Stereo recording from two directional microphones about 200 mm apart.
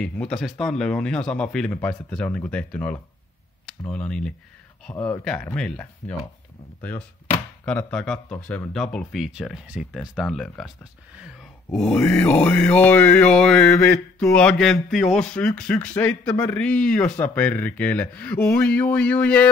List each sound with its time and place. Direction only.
0.0 s speech: 5° left (ahead or behind)
4.9 s a man's voice: 20° left (ahead or behind)
5.2 s speech: 5° left (ahead or behind)
7.6 s speech: 5° left (ahead or behind)
11.7 s a man's voice: 5° left (ahead or behind)